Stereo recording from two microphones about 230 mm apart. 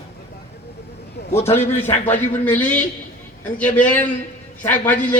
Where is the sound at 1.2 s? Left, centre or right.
Left.